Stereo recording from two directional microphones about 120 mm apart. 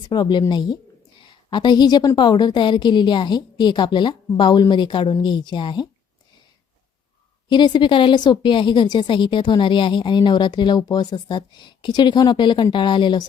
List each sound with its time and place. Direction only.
0.1 s a woman's voice: 35° left (ahead or behind)
7.5 s a woman's voice: 40° left (ahead or behind)